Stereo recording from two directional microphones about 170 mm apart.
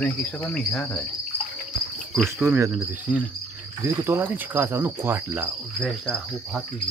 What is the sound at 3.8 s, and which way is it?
Cricket, 15° right (ahead or behind).